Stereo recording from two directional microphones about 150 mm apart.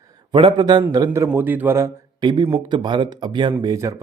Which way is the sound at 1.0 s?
15° right (ahead or behind).